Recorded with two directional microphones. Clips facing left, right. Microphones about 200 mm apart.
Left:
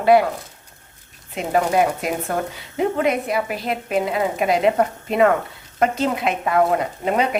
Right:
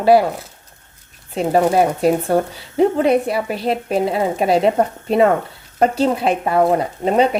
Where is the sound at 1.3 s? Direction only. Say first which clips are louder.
Right 4 dB; 35° right (ahead or behind).